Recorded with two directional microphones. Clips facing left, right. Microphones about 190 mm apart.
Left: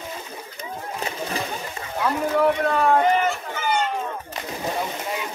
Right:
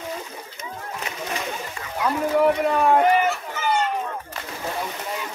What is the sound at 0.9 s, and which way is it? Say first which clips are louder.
Splash: left 2 dB; 30° left (ahead or behind).